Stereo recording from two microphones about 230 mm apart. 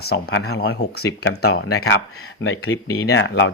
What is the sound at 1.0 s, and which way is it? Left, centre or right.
Speech, left.